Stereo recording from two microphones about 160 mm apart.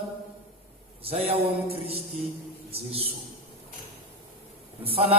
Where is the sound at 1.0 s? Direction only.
35° right (ahead or behind).